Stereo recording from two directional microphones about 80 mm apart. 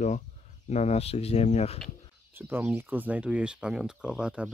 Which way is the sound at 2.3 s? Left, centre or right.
Right.